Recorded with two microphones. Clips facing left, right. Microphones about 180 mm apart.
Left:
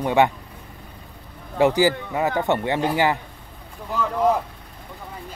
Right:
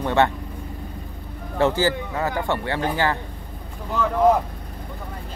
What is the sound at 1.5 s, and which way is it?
Speech, 15° left (ahead or behind).